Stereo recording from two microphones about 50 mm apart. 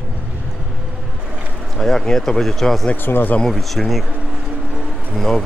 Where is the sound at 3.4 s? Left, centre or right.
Centre.